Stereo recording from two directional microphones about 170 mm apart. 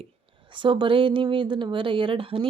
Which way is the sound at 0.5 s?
30° right (ahead or behind).